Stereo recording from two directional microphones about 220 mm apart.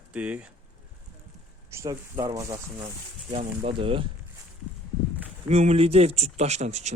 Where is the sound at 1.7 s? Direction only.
15° right (ahead or behind).